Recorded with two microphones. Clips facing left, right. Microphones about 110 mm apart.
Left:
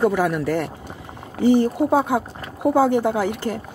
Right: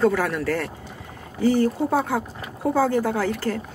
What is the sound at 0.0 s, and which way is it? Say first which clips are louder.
Speech: left 2 dB; 15° left (ahead or behind).